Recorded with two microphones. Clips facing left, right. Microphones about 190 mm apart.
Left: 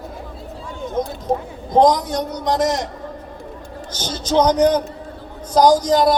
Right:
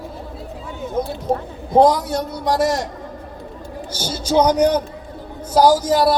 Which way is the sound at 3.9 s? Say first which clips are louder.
Right 1 dB; 10° right (ahead or behind).